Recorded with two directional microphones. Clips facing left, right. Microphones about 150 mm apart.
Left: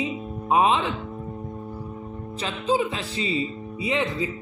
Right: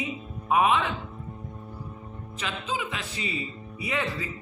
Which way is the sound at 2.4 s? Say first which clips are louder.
Left 8 dB; 35° left (ahead or behind).